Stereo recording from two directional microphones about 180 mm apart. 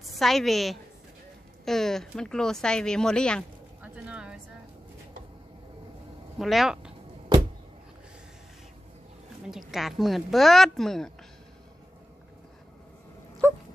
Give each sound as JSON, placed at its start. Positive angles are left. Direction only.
{"t": 0.0, "sound": "a woman's voice", "side_deg": 0}
{"t": 3.9, "sound": "a sound", "side_deg": -5}
{"t": 6.4, "sound": "speech", "side_deg": 0}
{"t": 9.4, "sound": "speech", "side_deg": 0}
{"t": 13.4, "sound": "wail", "side_deg": -15}